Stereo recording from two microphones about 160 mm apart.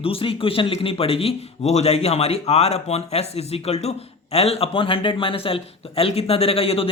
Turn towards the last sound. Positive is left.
turn(degrees=35)  # may be behind; listen again after turning